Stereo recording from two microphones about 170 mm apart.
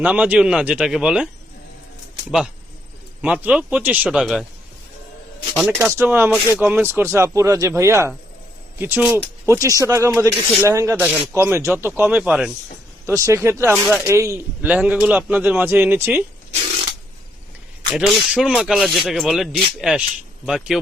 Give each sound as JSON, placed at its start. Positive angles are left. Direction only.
{"t": 0.0, "sound": "speech", "side_deg": -10}
{"t": 3.2, "sound": "speech", "side_deg": -5}
{"t": 5.5, "sound": "speech", "side_deg": -5}
{"t": 17.9, "sound": "speech", "side_deg": -5}